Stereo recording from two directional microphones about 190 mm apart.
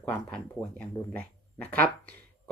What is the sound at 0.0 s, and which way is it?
Speech, 5° left (ahead or behind).